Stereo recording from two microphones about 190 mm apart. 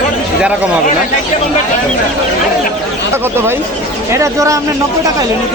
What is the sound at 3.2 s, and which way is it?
Speech, 10° right (ahead or behind).